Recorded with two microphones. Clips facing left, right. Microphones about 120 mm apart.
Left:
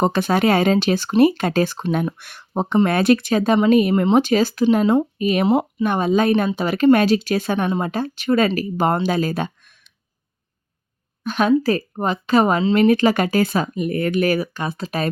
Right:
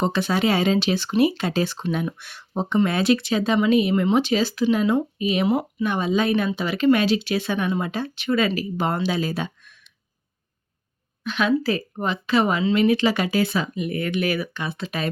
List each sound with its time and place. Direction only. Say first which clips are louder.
0.0 s speech: left 4 dB; 50° left (ahead or behind)
11.2 s speech: left 4 dB; 40° left (ahead or behind)